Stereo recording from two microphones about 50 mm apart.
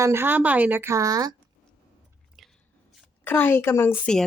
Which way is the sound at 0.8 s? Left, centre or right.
Right.